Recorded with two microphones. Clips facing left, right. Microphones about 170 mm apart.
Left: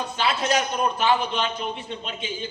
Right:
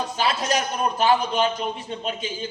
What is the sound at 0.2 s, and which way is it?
A woman's voice, 40° right (ahead or behind).